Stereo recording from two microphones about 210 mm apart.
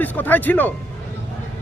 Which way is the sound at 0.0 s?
10° left (ahead or behind).